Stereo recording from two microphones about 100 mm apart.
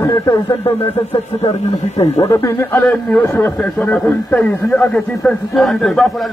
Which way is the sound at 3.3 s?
20° left (ahead or behind).